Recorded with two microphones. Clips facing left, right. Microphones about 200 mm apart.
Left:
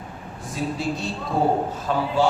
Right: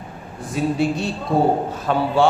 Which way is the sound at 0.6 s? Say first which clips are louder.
Right 6 dB; 60° right (ahead or behind).